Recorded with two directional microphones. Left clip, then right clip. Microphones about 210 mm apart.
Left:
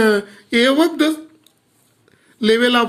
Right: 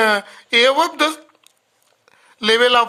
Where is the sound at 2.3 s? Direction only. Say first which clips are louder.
Right 1 dB; 40° right (ahead or behind).